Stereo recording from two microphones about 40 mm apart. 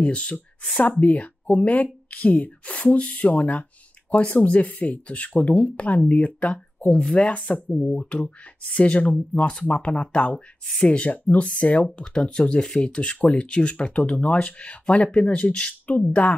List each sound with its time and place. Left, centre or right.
0.0 s speech: left
8.0 s speech: left
8.6 s speech: left
10.3 s speech: centre; by 16.0 s left